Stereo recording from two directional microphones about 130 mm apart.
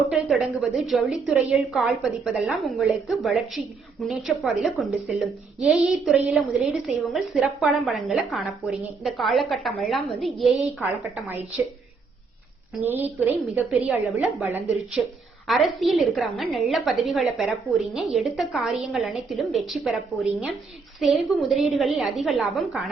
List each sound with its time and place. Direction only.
0.1 s a woman's voice: centre (ahead or behind)
11.3 s a woman's voice: 15° right (ahead or behind)
12.8 s a woman's voice: 15° right (ahead or behind)